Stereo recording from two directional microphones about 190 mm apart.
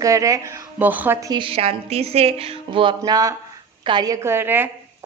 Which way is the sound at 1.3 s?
30° right (ahead or behind).